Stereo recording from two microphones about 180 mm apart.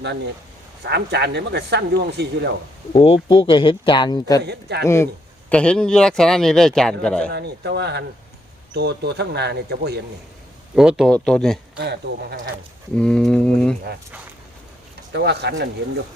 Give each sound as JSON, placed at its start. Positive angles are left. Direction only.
{"t": 0.9, "sound": "speech", "side_deg": -65}
{"t": 2.9, "sound": "speech", "side_deg": 30}
{"t": 7.3, "sound": "speech", "side_deg": -65}
{"t": 10.8, "sound": "speech", "side_deg": -5}
{"t": 11.8, "sound": "speech", "side_deg": -65}
{"t": 13.0, "sound": "speech", "side_deg": 5}
{"t": 15.1, "sound": "speech", "side_deg": -65}